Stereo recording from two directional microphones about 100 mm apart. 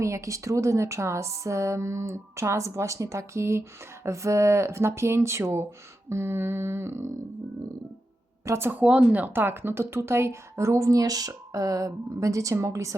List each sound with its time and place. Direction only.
0.0 s speech: 30° right (ahead or behind)
8.4 s speech: 25° right (ahead or behind)